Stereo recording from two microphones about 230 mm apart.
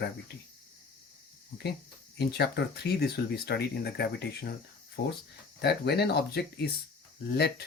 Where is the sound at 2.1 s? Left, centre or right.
Left.